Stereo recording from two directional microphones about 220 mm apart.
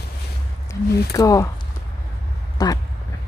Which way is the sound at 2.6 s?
15° left (ahead or behind).